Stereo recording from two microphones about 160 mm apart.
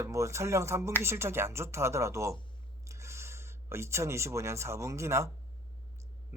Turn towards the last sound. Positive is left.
turn(degrees=-15)  # may be behind; listen again after turning